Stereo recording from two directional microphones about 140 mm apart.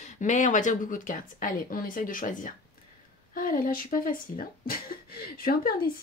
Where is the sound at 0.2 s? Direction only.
60° left (ahead or behind); by 5.9 s 90° left.